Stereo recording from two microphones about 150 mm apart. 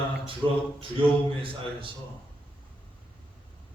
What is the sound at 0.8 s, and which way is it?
A man's voice, 35° right (ahead or behind).